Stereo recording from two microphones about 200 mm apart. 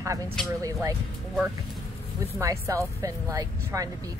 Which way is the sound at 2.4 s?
15° right (ahead or behind).